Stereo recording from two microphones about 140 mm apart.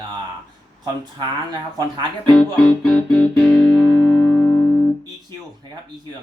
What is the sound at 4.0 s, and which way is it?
Music, 20° left (ahead or behind).